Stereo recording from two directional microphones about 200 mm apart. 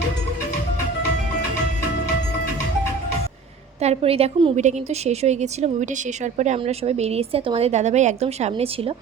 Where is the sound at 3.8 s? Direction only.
30° right (ahead or behind).